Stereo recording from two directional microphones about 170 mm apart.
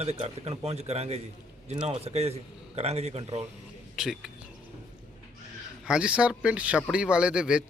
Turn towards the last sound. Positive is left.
turn(degrees=-5)  # may be behind; listen again after turning